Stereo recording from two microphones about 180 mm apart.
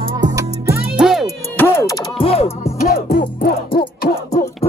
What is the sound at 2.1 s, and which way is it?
Music, 35° left (ahead or behind).